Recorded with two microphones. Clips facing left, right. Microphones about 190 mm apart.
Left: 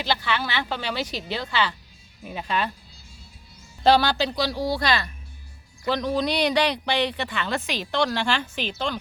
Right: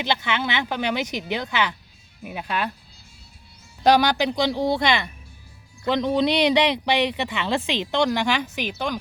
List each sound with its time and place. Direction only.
0.0 s speech: 20° right (ahead or behind)
3.8 s speech: 15° right (ahead or behind)